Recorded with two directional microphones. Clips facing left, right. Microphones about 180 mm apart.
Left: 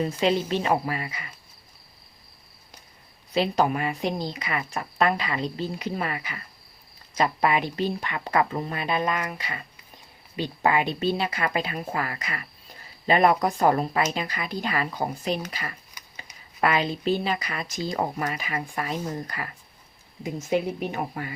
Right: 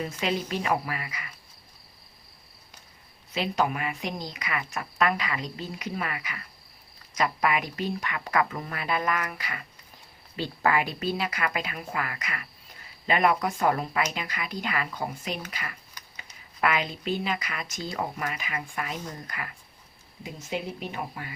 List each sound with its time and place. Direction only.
0.0 s speech: 30° left (ahead or behind)
3.3 s a woman's voice: 35° left (ahead or behind)
16.0 s a sound: 10° left (ahead or behind)
16.6 s a woman's voice: 35° left (ahead or behind)
20.5 s speech: 45° left (ahead or behind)